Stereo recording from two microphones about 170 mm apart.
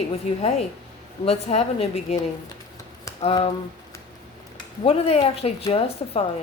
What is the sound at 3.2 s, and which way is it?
Speech, 35° left (ahead or behind).